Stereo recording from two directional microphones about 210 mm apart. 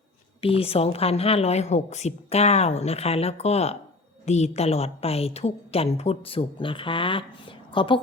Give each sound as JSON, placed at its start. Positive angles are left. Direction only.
{"t": 0.4, "sound": "a woman's voice", "side_deg": 30}